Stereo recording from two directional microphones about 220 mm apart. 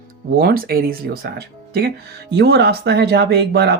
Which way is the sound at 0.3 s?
40° right (ahead or behind).